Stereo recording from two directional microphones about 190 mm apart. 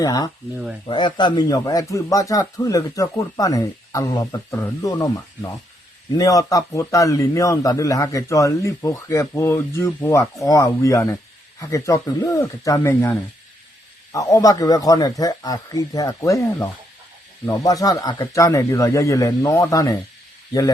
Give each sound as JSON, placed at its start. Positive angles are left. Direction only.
{"t": 0.0, "sound": "speech", "side_deg": 20}